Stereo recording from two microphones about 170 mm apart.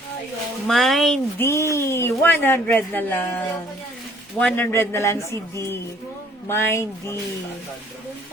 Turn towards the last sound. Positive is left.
turn(degrees=15)  # may be behind; listen again after turning